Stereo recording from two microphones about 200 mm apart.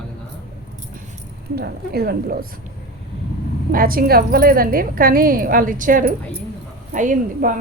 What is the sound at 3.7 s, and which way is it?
A woman's voice, 45° right (ahead or behind).